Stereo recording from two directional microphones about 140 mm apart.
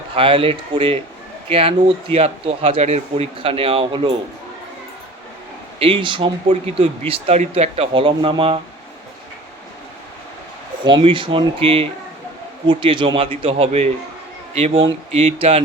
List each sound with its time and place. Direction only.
0.2 s speech: 40° right (ahead or behind)
5.8 s speech: 35° right (ahead or behind)
10.8 s speech: 35° right (ahead or behind)